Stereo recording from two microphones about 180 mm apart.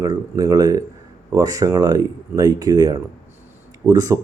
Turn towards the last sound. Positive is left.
turn(degrees=-20)  # may be behind; listen again after turning